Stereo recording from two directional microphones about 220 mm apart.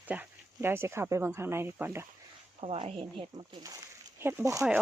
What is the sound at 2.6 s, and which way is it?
Speech, 25° right (ahead or behind).